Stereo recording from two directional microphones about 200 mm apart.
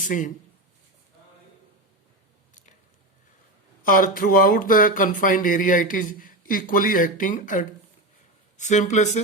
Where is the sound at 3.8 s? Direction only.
45° left (ahead or behind).